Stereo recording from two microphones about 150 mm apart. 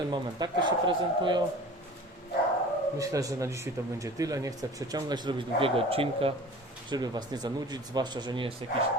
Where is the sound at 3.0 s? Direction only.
20° right (ahead or behind); by 6.3 s 40° right (ahead or behind).